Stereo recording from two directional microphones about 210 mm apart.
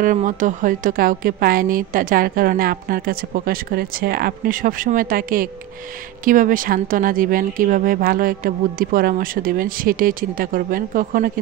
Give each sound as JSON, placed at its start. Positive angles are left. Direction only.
{"t": 0.0, "sound": "a woman's voice", "side_deg": -40}